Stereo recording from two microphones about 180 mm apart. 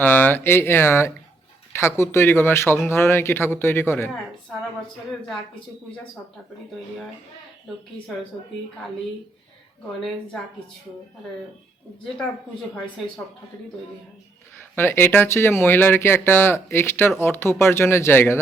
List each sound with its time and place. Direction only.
0.0 s speech: 10° left (ahead or behind)
14.8 s speech: 10° left (ahead or behind)